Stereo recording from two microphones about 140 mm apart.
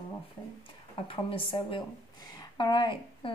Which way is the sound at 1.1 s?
40° left (ahead or behind).